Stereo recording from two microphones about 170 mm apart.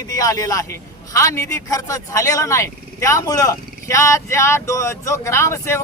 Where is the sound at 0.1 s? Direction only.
20° left (ahead or behind).